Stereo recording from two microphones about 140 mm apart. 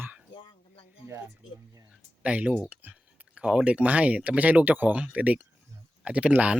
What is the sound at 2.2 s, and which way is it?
Speech, 10° right (ahead or behind).